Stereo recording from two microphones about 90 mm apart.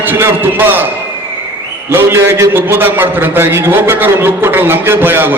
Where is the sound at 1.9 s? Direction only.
25° right (ahead or behind).